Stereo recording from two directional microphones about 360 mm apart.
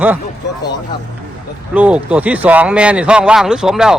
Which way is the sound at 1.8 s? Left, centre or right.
Centre.